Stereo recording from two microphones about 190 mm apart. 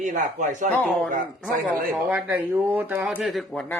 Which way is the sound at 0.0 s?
40° right (ahead or behind).